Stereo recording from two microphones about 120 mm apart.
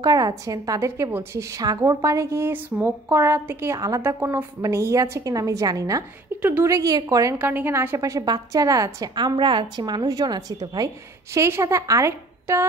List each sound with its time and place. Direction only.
0.0 s a woman's voice: 30° right (ahead or behind)
6.4 s a woman's voice: 15° right (ahead or behind)
6.7 s a woman's voice: 30° right (ahead or behind)
11.3 s a woman's voice: 25° right (ahead or behind)